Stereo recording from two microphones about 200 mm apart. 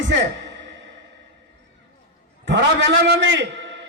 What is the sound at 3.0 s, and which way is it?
Speech, 60° right (ahead or behind).